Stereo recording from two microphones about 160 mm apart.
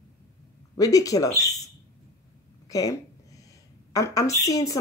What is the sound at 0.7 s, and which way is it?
Speech, 20° left (ahead or behind).